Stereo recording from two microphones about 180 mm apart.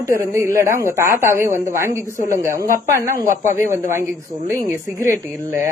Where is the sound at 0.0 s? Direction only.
15° right (ahead or behind).